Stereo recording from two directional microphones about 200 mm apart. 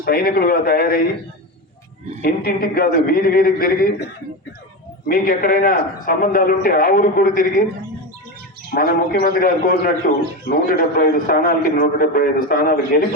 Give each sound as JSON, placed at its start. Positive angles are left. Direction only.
{"t": 0.0, "sound": "a man's voice", "side_deg": 50}
{"t": 2.2, "sound": "a man's voice", "side_deg": 50}
{"t": 8.7, "sound": "a man's voice", "side_deg": 45}